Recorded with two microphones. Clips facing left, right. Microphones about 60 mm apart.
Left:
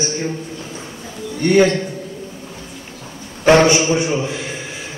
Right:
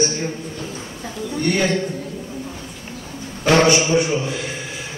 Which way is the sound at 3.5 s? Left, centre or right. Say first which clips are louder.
Left 3 dB; left.